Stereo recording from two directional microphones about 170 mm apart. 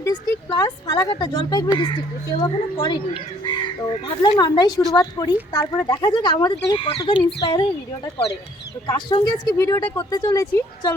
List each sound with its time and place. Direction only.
0.0 s speech: 25° left (ahead or behind)
7.0 s speech: 25° left (ahead or behind)
8.9 s speech: 25° left (ahead or behind)